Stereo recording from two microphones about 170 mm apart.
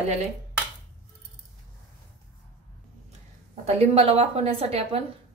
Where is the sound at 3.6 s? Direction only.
35° right (ahead or behind).